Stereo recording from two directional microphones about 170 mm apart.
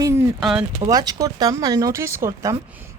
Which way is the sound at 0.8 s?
20° right (ahead or behind).